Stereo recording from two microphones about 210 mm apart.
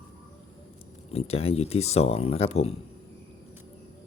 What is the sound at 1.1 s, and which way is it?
Speech, 30° left (ahead or behind).